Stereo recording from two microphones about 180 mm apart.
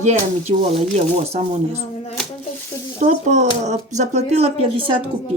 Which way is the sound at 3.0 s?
40° right (ahead or behind).